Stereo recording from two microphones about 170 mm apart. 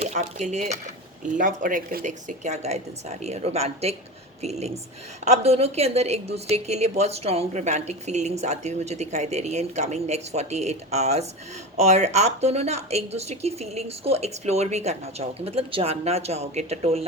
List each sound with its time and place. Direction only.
0.0 s a woman's voice: 45° right (ahead or behind)